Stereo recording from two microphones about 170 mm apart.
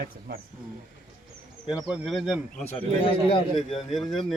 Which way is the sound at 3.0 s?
30° left (ahead or behind).